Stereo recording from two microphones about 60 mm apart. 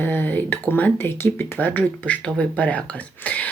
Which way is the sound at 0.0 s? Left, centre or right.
Left.